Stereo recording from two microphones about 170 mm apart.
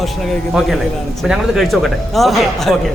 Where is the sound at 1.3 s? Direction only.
Centre (ahead or behind).